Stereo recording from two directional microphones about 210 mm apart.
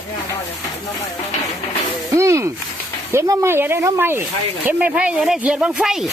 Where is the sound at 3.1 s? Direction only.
15° right (ahead or behind).